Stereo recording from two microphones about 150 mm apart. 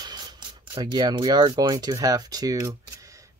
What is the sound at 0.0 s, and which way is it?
Speech, 30° right (ahead or behind).